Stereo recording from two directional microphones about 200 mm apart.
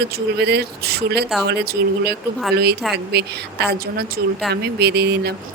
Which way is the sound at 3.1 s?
55° right (ahead or behind).